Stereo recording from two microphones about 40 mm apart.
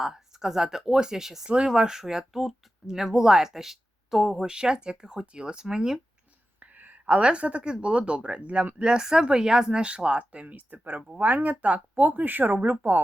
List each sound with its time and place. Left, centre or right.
0.0 s speech: centre
1.5 s speech: right; by 4.4 s centre
4.4 s speech: centre
6.7 s a sound: right
7.2 s speech: right
8.8 s speech: centre; by 13.0 s right